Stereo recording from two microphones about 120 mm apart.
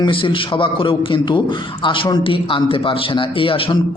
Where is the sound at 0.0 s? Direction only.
45° left (ahead or behind).